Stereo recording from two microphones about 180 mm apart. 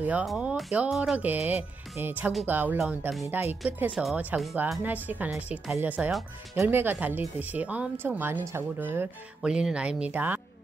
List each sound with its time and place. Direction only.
0.0 s speech: 5° right (ahead or behind)